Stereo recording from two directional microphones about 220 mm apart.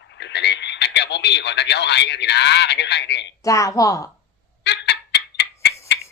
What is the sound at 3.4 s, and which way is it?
Speech, 15° left (ahead or behind).